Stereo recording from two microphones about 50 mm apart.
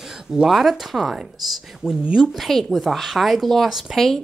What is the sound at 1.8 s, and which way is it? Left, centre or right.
Speech, centre.